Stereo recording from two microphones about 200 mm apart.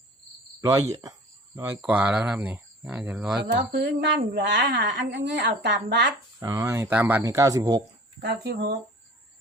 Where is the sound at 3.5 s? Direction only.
55° right (ahead or behind).